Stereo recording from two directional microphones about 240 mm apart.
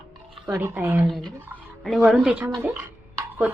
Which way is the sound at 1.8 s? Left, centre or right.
Centre.